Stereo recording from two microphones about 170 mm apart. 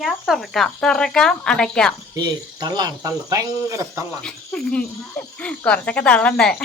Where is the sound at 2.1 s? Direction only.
25° right (ahead or behind).